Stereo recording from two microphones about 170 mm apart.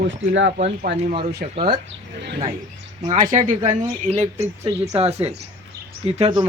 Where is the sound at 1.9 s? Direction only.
90° right.